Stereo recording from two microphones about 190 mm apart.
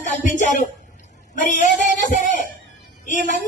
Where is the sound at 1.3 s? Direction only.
40° left (ahead or behind).